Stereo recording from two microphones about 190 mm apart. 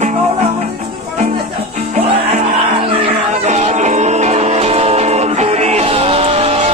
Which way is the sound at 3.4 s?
35° right (ahead or behind).